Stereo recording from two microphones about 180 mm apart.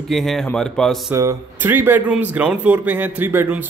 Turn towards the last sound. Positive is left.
turn(degrees=-10)  # may be behind; listen again after turning